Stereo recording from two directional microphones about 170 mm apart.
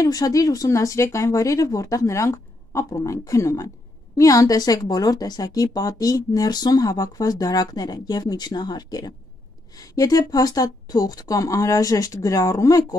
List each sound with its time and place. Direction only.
0.0 s speech: 20° left (ahead or behind)